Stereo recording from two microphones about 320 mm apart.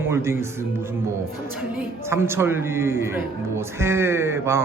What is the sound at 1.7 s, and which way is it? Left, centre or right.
A woman's voice, centre.